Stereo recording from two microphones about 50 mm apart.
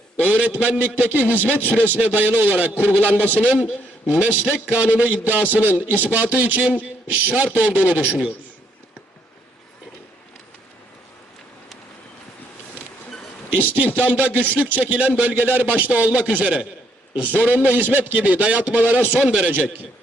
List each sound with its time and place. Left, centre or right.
0.2 s a man's voice: right
3.4 s a man's voice: right
13.6 s a man's voice: right